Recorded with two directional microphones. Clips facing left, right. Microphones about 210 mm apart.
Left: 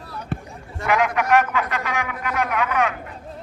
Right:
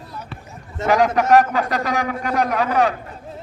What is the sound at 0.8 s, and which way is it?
A man's voice, 40° right (ahead or behind).